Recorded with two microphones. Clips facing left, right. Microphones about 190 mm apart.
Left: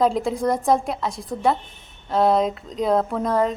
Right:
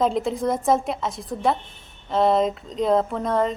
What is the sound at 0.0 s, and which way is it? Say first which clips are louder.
A woman's voice: left 2 dB; centre (ahead or behind).